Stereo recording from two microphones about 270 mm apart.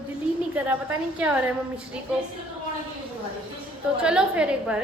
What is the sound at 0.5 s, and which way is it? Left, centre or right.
Speech, centre.